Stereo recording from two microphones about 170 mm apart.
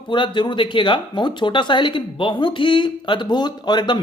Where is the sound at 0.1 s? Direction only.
30° left (ahead or behind).